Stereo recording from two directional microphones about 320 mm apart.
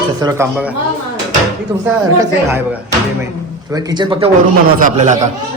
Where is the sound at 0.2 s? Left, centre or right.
Centre.